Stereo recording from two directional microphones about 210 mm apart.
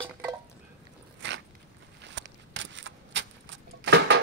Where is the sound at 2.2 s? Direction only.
60° right (ahead or behind).